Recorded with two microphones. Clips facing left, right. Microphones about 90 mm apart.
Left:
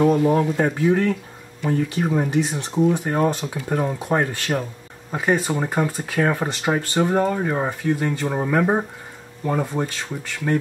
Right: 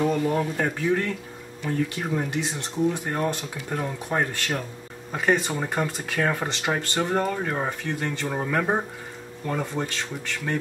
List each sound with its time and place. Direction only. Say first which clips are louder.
0.2 s speech: left 6 dB; 15° left (ahead or behind)
2.8 s speech: left 6 dB; 20° left (ahead or behind)